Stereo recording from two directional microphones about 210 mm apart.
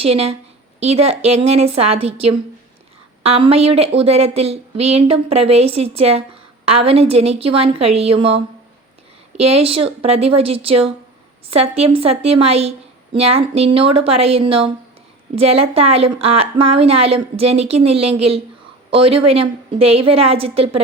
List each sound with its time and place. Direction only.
0.0 s a woman's voice: 30° right (ahead or behind)
3.2 s a woman's voice: 30° right (ahead or behind)
9.4 s a woman's voice: 30° right (ahead or behind)